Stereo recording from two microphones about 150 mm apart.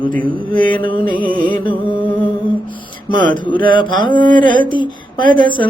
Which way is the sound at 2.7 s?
30° left (ahead or behind).